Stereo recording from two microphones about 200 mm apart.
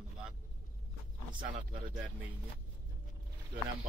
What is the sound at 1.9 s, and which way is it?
Speech, 5° right (ahead or behind).